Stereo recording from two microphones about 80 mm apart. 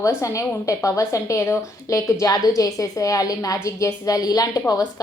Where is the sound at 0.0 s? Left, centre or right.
Left.